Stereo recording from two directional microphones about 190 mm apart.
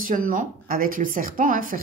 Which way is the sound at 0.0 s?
45° right (ahead or behind).